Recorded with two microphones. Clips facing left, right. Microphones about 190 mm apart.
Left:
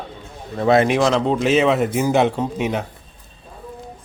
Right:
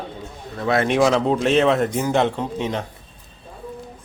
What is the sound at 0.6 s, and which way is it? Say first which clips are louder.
Speech: left 5 dB; 20° left (ahead or behind).